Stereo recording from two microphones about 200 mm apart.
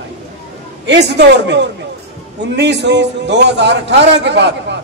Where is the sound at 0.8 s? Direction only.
60° right (ahead or behind).